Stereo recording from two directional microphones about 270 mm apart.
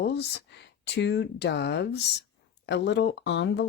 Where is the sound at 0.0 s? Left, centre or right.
Left.